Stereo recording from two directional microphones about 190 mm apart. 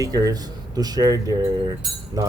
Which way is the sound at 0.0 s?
20° right (ahead or behind).